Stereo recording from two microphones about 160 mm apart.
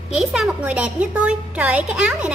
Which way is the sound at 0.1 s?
5° right (ahead or behind).